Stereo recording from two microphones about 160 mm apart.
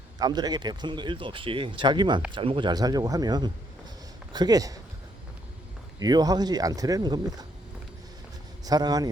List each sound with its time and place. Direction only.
0.2 s speech: 25° right (ahead or behind)
6.0 s speech: 25° right (ahead or behind)
8.6 s speech: 25° right (ahead or behind)